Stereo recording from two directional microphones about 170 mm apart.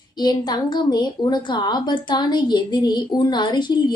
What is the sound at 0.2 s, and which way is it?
A woman's voice, 25° left (ahead or behind).